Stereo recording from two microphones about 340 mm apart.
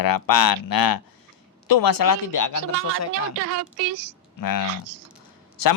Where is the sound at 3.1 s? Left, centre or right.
Right.